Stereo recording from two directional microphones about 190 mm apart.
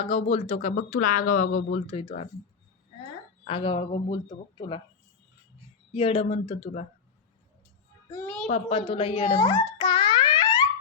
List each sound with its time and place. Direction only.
0.0 s speech: 35° left (ahead or behind)
1.7 s speech: 30° left (ahead or behind)
3.4 s speech: 25° left (ahead or behind)
5.9 s speech: 30° left (ahead or behind)
8.1 s a child's voice: 10° left (ahead or behind)
8.7 s speech: 30° left (ahead or behind)
9.3 s speech: 20° left (ahead or behind)
9.7 s music: 25° left (ahead or behind)